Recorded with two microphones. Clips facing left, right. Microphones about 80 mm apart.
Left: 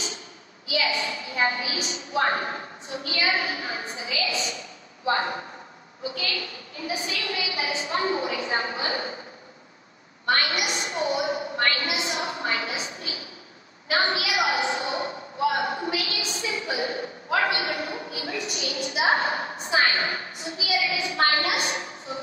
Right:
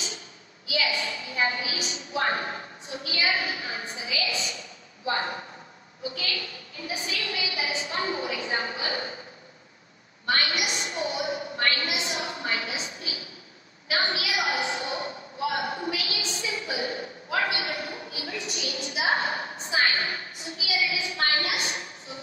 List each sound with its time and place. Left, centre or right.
0.7 s a woman's voice: left
10.2 s a woman's voice: left
15.9 s a woman's voice: left